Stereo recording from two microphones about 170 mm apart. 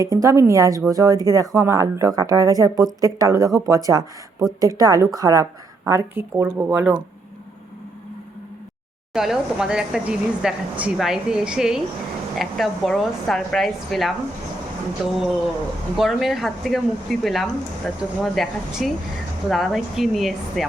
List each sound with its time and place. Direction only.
0.0 s a woman's voice: 20° right (ahead or behind)
9.1 s speech: centre (ahead or behind)